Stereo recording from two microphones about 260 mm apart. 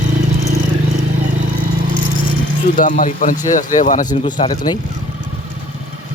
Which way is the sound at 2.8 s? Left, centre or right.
Left.